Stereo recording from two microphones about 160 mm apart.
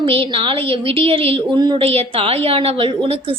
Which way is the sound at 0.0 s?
35° right (ahead or behind).